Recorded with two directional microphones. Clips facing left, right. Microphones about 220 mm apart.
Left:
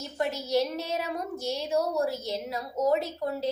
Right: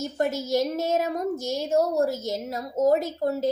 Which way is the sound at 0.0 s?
45° right (ahead or behind).